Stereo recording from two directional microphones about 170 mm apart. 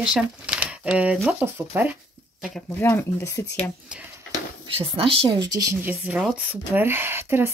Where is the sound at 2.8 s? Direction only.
15° left (ahead or behind).